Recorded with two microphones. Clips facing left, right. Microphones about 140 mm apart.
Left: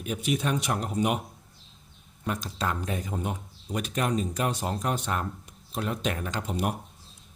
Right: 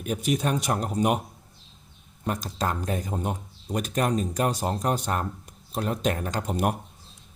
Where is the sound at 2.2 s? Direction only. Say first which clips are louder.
Right 2 dB; 40° right (ahead or behind).